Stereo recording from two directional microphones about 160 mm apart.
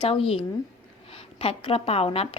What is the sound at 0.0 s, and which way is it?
A woman's voice, 35° left (ahead or behind).